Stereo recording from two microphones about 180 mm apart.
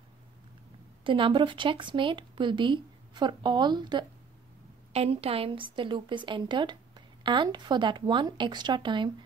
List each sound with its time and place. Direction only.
1.0 s a woman's voice: 30° right (ahead or behind)